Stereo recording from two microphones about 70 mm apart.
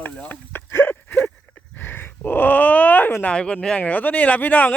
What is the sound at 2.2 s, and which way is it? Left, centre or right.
Speech, left.